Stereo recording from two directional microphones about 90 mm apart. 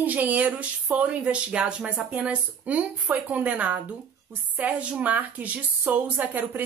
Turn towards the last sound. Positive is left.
turn(degrees=-20)  # may be behind; listen again after turning